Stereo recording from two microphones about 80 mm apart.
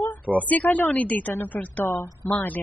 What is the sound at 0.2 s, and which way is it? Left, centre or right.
Speech, centre.